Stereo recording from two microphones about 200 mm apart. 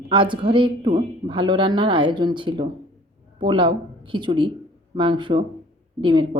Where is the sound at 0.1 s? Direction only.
25° right (ahead or behind).